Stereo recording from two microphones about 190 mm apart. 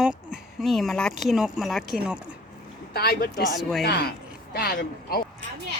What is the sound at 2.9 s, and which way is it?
A woman's voice, 55° left (ahead or behind).